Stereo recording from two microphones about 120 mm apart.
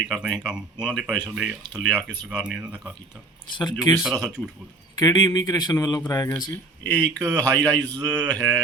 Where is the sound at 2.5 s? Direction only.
10° right (ahead or behind).